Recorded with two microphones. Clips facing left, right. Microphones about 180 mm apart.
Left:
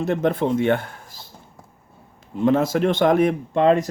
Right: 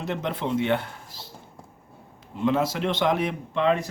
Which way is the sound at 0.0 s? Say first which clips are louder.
Left 8 dB; 50° left (ahead or behind).